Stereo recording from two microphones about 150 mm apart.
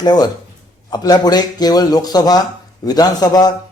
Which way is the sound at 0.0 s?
30° left (ahead or behind).